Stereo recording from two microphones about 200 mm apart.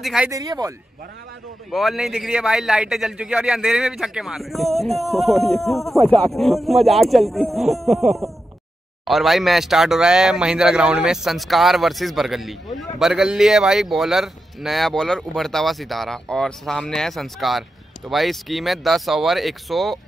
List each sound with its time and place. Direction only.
0.0 s speech: centre (ahead or behind)
0.3 s speech: 20° right (ahead or behind)
1.7 s speech: centre (ahead or behind)